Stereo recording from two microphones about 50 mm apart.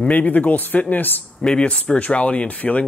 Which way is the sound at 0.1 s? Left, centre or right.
Left.